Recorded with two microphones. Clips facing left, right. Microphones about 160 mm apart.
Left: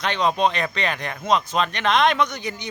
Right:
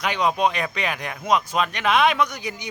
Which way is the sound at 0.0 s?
10° right (ahead or behind).